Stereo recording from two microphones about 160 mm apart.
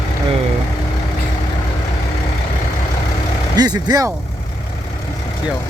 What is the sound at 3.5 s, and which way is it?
Speech, 25° right (ahead or behind).